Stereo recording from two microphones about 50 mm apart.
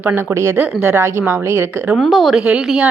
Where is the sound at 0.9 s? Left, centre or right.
Right.